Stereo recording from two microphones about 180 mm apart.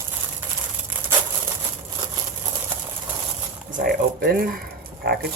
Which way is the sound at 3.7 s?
55° right (ahead or behind).